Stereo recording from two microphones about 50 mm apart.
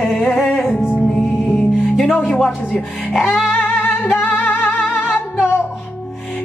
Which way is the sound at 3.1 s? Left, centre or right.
Centre.